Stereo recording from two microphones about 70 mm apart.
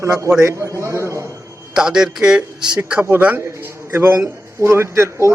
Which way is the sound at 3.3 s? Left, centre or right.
Right.